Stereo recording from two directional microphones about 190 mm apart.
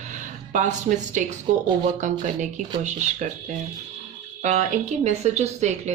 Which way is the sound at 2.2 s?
40° right (ahead or behind).